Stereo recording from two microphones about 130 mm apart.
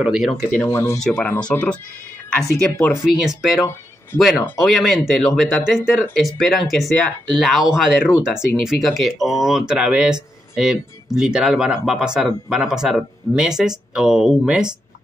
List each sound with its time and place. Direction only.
0.0 s speech: 5° right (ahead or behind)
0.5 s speech: 15° left (ahead or behind); by 14.8 s 5° right (ahead or behind)